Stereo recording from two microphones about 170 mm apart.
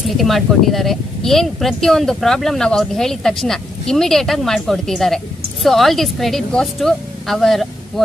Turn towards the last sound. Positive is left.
turn(degrees=0)  # may be behind; listen again after turning